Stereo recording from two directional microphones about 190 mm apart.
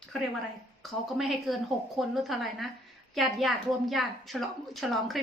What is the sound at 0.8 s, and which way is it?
A woman's voice, centre (ahead or behind).